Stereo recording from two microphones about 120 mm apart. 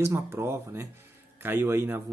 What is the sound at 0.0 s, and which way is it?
Speech, 20° right (ahead or behind).